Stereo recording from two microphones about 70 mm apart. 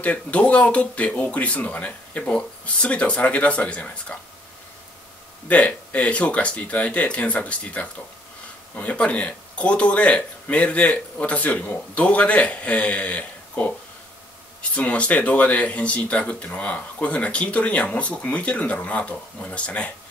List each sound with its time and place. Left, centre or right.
0.0 s speech: centre
5.5 s speech: left